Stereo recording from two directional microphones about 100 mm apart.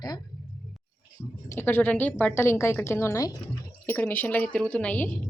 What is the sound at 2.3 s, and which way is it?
A woman's voice, 25° left (ahead or behind).